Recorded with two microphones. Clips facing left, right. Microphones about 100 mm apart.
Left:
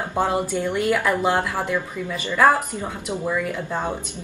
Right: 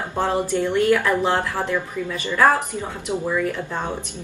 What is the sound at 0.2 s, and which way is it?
A woman's voice, 10° left (ahead or behind).